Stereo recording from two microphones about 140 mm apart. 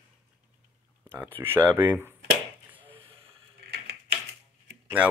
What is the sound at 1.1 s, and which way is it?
Speech, 15° right (ahead or behind).